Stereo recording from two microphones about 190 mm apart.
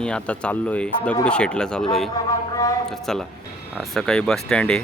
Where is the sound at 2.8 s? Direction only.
Centre (ahead or behind).